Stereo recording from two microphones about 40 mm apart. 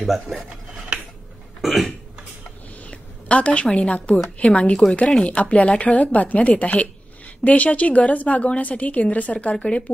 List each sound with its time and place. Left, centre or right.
0.0 s speech: centre
1.6 s burping: centre
2.9 s a sound: left
3.6 s a woman's voice: left